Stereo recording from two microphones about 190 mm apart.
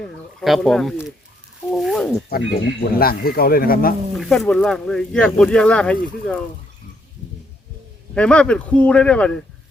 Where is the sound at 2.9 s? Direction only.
50° left (ahead or behind).